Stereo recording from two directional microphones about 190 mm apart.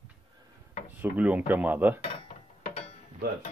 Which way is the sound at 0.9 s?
10° right (ahead or behind).